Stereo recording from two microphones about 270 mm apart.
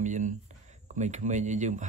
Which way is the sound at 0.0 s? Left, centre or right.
Right.